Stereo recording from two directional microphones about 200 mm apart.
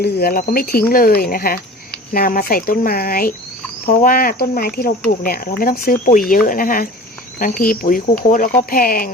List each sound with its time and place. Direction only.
0.0 s speech: 50° left (ahead or behind)